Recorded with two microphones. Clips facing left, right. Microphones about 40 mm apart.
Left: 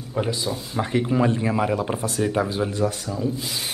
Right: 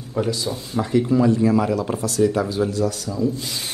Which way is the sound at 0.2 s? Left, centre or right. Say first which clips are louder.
Right 2 dB; left.